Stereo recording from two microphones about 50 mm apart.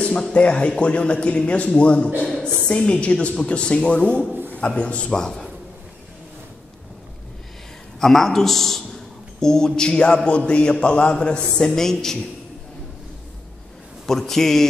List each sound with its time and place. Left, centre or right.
0.0 s a man's voice: centre
5.2 s a man's voice: centre
8.0 s a man's voice: centre
14.0 s a man's voice: centre